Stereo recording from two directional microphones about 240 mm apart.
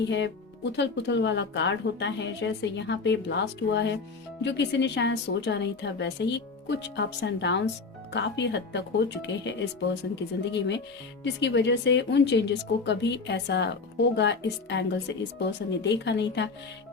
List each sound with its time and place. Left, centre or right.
0.1 s speech: left